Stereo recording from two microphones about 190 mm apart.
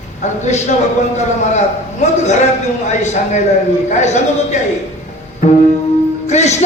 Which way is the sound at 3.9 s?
40° left (ahead or behind).